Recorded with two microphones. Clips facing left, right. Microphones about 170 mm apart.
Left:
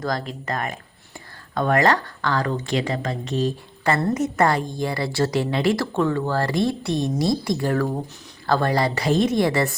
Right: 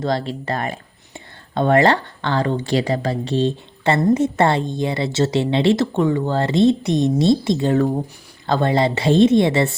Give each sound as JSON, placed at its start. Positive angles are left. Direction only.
{"t": 0.0, "sound": "speech", "side_deg": -30}